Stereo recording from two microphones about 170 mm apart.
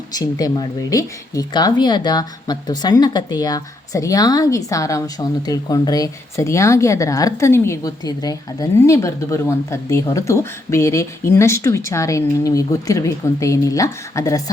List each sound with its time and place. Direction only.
0.1 s speech: 20° left (ahead or behind)